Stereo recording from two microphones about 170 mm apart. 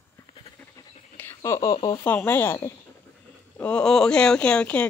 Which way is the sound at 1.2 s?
15° left (ahead or behind).